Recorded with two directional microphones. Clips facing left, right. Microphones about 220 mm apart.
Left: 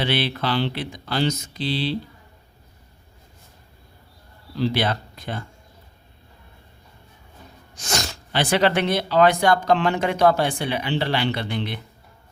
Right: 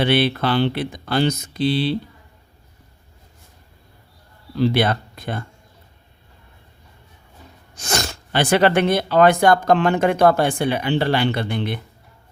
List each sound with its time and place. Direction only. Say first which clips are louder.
0.0 s speech: right 6 dB; 55° right (ahead or behind)
4.6 s speech: right 4 dB; 55° right (ahead or behind)
7.8 s speech: right 3 dB; 55° right (ahead or behind)